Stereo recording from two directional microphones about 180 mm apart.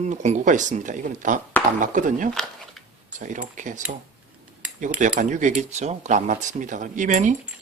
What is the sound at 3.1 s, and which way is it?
Speech, 45° right (ahead or behind).